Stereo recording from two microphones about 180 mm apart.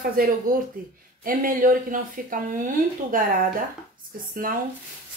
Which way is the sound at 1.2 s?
50° right (ahead or behind).